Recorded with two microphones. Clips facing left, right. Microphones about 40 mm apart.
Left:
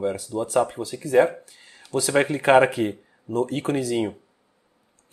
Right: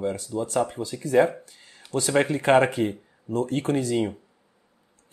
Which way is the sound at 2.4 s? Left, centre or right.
Centre.